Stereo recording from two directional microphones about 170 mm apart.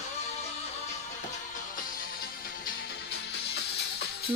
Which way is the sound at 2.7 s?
75° left (ahead or behind).